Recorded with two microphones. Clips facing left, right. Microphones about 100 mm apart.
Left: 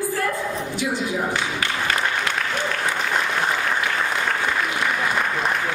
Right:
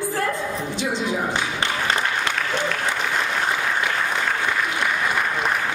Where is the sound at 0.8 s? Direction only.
25° right (ahead or behind).